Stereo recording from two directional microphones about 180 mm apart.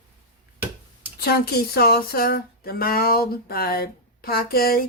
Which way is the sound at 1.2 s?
60° left (ahead or behind).